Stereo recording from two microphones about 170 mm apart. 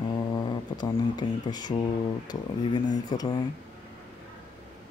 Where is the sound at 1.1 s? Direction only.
25° left (ahead or behind).